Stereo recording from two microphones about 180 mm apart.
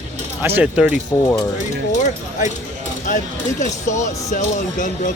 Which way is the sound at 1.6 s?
40° left (ahead or behind).